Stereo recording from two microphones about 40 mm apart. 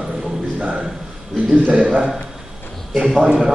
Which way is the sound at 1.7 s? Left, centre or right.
Right.